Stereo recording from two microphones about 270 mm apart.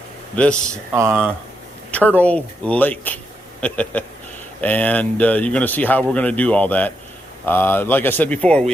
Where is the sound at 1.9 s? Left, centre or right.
Centre.